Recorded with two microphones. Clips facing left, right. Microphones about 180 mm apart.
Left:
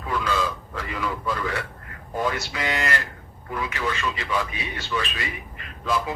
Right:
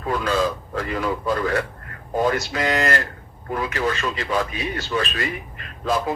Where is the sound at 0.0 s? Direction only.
45° right (ahead or behind).